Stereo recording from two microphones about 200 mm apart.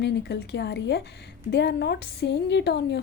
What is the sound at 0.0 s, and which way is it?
A woman's voice, 55° left (ahead or behind).